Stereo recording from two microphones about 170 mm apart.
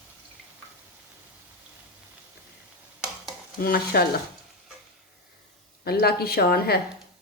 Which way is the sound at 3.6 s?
60° left (ahead or behind).